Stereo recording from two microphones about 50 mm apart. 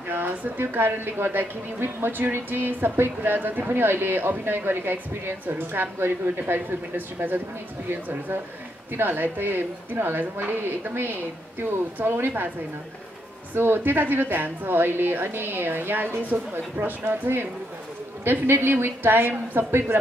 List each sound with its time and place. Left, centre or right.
0.1 s a woman's voice: right
7.2 s speech: right
8.9 s a woman's voice: right
13.6 s a woman's voice: right